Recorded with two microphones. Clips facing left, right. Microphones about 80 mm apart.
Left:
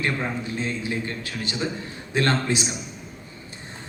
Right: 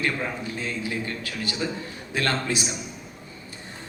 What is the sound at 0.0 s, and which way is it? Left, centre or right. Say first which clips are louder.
A man's voice: left 1 dB; left.